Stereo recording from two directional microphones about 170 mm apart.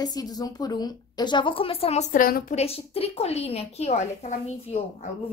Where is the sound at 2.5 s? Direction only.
35° left (ahead or behind).